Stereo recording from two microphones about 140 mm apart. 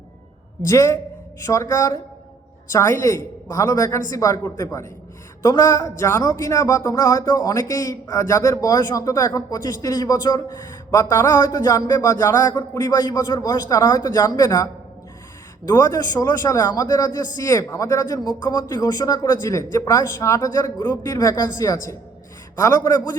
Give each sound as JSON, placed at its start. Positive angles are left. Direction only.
{"t": 0.6, "sound": "speech", "side_deg": 20}